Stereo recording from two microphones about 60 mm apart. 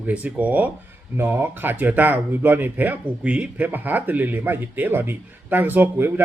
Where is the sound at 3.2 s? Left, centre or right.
Centre.